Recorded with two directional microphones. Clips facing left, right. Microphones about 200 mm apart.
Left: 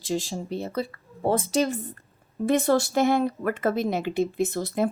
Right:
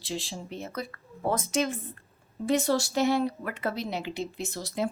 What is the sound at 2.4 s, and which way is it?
Speech, 55° left (ahead or behind).